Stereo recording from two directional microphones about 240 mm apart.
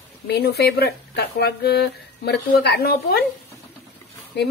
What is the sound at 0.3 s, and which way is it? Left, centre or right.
Speech, left.